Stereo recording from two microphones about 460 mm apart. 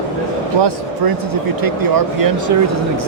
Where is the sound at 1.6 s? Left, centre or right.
Right.